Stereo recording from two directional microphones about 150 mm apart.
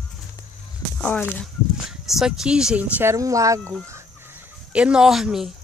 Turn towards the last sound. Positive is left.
turn(degrees=-5)  # may be behind; listen again after turning